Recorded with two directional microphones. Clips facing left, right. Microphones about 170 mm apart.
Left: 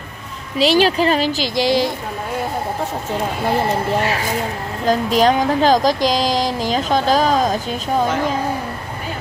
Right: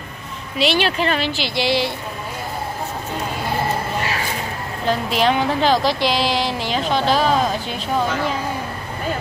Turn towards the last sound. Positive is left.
turn(degrees=40)  # may be behind; listen again after turning